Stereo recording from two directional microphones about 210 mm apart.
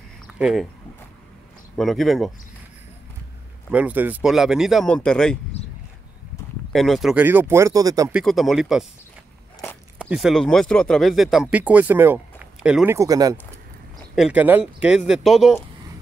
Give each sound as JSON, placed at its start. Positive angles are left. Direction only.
{"t": 0.3, "sound": "speech", "side_deg": -5}
{"t": 1.8, "sound": "speech", "side_deg": 0}
{"t": 3.7, "sound": "speech", "side_deg": -5}
{"t": 6.7, "sound": "speech", "side_deg": 0}
{"t": 8.1, "sound": "speech", "side_deg": 0}
{"t": 9.9, "sound": "speech", "side_deg": -5}
{"t": 14.1, "sound": "speech", "side_deg": -5}